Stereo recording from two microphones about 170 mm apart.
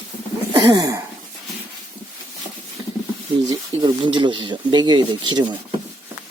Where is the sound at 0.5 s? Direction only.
25° right (ahead or behind).